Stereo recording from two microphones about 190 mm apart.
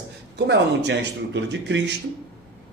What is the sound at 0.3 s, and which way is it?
A man's voice, 65° right (ahead or behind).